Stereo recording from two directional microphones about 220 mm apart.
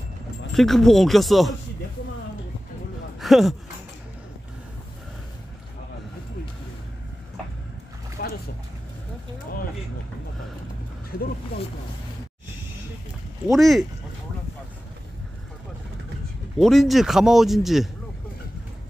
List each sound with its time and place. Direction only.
0.5 s a man's voice: centre (ahead or behind)
3.2 s speech: centre (ahead or behind)
8.2 s boat: 45° left (ahead or behind)
13.5 s a man's voice: centre (ahead or behind)
16.5 s a man's voice: centre (ahead or behind)